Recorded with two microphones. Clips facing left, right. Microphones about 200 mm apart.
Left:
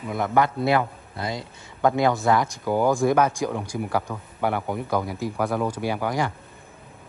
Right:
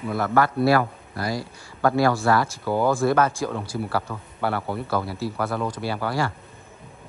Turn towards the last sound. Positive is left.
turn(degrees=15)  # may be behind; listen again after turning